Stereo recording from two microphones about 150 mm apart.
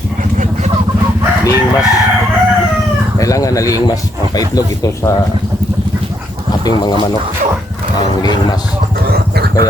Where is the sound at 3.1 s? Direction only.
20° left (ahead or behind).